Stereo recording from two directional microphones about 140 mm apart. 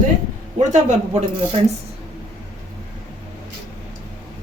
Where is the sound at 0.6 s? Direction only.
55° right (ahead or behind).